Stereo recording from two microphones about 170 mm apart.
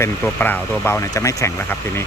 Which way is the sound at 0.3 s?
10° left (ahead or behind).